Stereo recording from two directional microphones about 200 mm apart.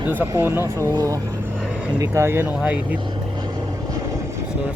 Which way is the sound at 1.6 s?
5° right (ahead or behind).